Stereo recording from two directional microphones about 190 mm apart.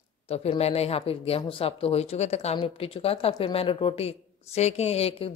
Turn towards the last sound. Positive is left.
turn(degrees=30)  # may be behind; listen again after turning